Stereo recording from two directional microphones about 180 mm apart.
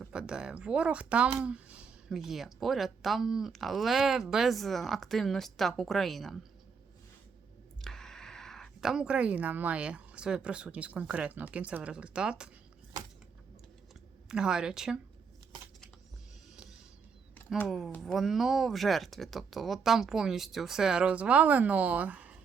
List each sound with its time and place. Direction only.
0.0 s speech: 5° right (ahead or behind)
7.8 s speech: centre (ahead or behind)
14.3 s speech: 5° right (ahead or behind)
17.7 s speech: centre (ahead or behind)